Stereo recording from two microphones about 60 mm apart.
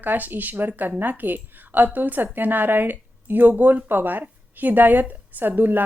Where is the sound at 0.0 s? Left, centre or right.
Right.